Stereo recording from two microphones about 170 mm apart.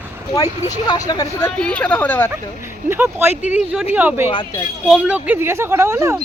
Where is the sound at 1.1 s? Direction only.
20° left (ahead or behind).